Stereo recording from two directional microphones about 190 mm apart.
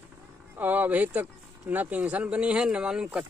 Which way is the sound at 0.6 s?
10° right (ahead or behind).